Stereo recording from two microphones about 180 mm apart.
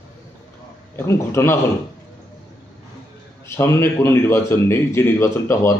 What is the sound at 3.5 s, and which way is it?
Speech, 15° left (ahead or behind).